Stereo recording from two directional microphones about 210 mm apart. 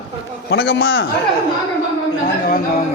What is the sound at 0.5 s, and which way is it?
Speech, 55° left (ahead or behind).